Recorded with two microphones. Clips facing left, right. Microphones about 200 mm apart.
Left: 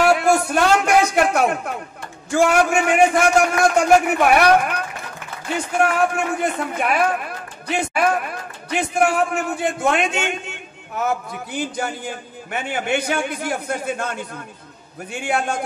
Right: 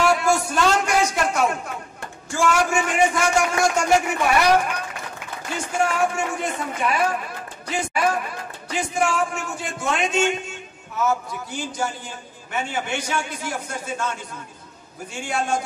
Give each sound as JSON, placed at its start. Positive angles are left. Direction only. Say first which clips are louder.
{"t": 0.0, "sound": "a sound", "louder": "left 3 dB", "side_deg": 60}
{"t": 2.3, "sound": "a man's voice", "louder": "left 4 dB", "side_deg": 60}
{"t": 5.6, "sound": "a man's voice", "louder": "left 3 dB", "side_deg": 60}